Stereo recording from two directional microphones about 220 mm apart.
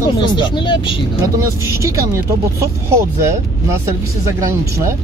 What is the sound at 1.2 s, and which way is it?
Speech, 15° right (ahead or behind).